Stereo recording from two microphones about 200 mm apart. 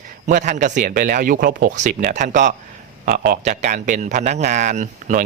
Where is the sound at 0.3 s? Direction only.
40° right (ahead or behind).